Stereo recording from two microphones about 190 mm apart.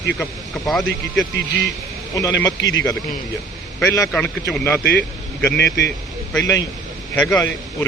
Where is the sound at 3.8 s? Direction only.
15° left (ahead or behind).